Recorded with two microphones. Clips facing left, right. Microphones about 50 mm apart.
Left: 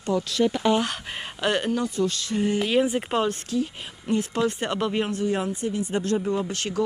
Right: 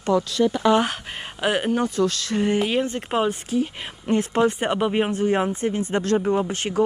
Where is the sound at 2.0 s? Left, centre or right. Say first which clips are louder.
Right 3 dB; right.